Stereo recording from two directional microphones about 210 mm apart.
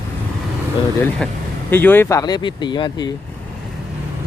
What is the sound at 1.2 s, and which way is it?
Speech, 5° left (ahead or behind).